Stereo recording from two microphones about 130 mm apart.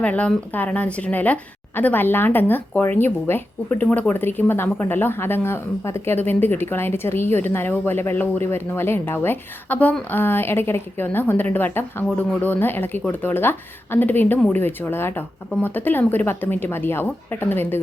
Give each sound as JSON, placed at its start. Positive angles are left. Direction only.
{"t": 0.0, "sound": "speech", "side_deg": 10}